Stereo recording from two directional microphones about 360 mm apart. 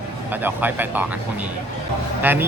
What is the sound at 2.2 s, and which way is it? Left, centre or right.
Speech, centre.